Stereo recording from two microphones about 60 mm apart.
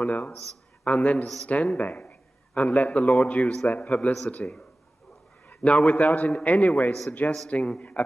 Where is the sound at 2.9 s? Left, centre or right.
Left.